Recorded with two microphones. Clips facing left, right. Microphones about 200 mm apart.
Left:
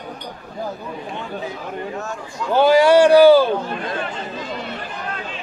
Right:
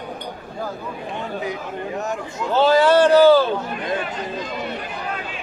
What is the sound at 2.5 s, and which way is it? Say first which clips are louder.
Speech: left 2 dB; 15° left (ahead or behind).